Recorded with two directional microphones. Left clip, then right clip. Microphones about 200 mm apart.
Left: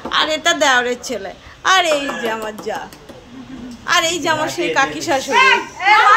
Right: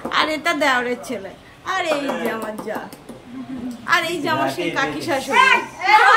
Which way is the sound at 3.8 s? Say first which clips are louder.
Left 4 dB; 5° left (ahead or behind).